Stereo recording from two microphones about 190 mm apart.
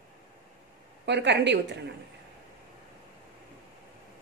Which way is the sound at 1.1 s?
65° right (ahead or behind).